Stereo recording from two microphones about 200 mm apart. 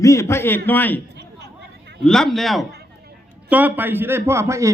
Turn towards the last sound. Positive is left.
turn(degrees=-15)  # may be behind; listen again after turning